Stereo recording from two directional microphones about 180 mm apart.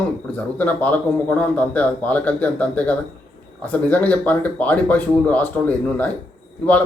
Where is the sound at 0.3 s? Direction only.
10° left (ahead or behind).